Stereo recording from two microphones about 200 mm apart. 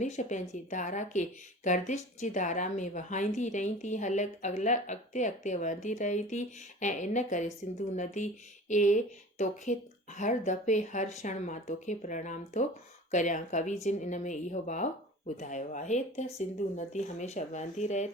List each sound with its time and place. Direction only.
0.0 s a woman's voice: 35° left (ahead or behind)